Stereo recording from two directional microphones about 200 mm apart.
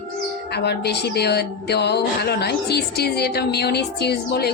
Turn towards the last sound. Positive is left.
turn(degrees=55)  # may be behind; listen again after turning